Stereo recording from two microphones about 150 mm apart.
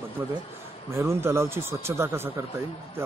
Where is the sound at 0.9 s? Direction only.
15° right (ahead or behind).